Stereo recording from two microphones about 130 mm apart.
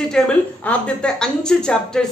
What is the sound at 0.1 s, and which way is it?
A man's voice, 10° left (ahead or behind).